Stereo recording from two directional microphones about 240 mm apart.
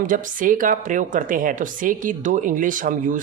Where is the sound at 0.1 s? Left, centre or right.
Right.